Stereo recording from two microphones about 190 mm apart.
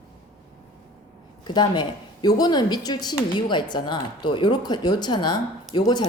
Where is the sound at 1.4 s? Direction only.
25° left (ahead or behind).